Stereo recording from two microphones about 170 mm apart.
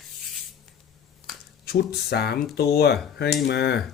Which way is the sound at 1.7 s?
70° left (ahead or behind).